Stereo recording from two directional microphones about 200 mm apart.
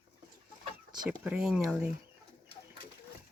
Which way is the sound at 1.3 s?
5° right (ahead or behind).